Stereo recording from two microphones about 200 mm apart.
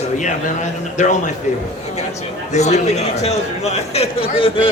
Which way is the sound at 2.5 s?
35° left (ahead or behind).